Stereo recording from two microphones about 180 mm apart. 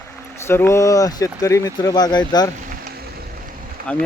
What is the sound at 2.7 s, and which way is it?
Vehicle, 55° right (ahead or behind).